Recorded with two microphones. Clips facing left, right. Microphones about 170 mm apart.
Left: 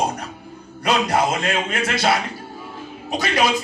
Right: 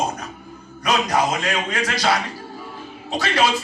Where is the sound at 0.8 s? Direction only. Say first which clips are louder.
Left 1 dB; 30° left (ahead or behind).